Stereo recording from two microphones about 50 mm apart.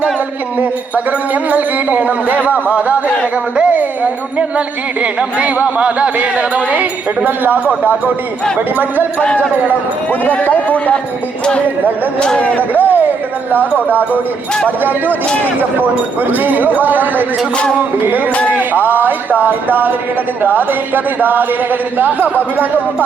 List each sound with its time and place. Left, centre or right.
0.6 s a man's voice: right
10.1 s speech: left
12.4 s speech: left
12.7 s a sound: right
14.8 s a man's voice: right
16.2 s a man's voice: right
18.3 s speech: left
18.5 s a man's voice: right